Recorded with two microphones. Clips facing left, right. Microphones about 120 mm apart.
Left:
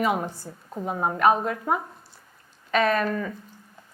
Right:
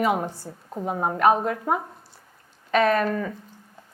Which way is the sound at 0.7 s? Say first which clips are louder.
Right 1 dB; 30° right (ahead or behind).